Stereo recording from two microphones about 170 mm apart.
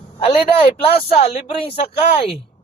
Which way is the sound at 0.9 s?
35° left (ahead or behind).